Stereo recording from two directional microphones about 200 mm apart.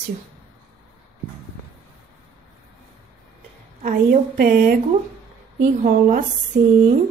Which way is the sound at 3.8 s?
45° right (ahead or behind).